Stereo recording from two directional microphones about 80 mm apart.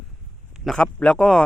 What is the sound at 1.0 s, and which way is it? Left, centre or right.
Speech, centre.